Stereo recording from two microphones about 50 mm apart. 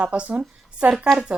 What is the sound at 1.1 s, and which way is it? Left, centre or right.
Speech, centre.